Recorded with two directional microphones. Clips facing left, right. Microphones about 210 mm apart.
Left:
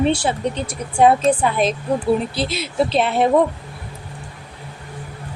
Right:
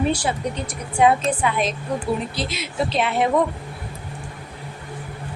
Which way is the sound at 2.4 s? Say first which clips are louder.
Left 5 dB; 30° left (ahead or behind).